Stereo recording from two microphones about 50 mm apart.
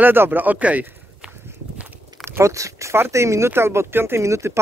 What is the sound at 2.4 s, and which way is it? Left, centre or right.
Speech, right.